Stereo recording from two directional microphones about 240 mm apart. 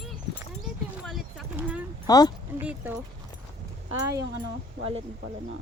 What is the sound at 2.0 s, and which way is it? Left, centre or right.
Speech, centre.